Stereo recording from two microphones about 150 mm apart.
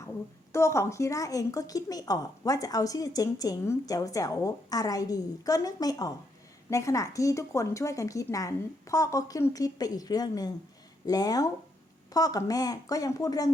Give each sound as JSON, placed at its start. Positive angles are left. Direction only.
{"t": 0.5, "sound": "a woman's voice", "side_deg": 20}